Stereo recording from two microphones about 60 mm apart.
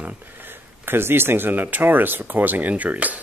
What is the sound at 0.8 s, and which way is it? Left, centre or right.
Speech, right.